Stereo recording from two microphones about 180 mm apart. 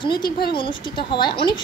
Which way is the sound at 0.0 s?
25° left (ahead or behind).